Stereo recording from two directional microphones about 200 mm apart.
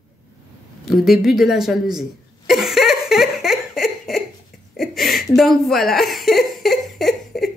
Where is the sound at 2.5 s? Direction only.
Centre (ahead or behind).